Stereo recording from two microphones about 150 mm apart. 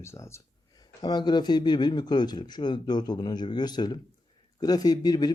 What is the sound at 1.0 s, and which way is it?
A man's voice, 30° left (ahead or behind).